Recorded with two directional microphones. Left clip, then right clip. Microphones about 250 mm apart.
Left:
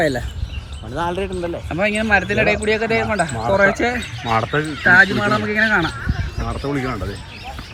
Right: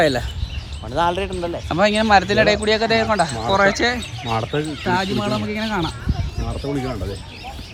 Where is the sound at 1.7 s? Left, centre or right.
Right.